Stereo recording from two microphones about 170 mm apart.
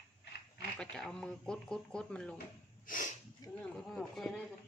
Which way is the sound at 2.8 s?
50° left (ahead or behind).